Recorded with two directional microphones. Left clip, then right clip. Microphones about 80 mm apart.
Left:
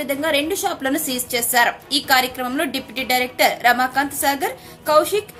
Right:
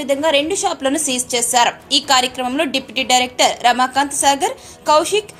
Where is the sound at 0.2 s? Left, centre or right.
Right.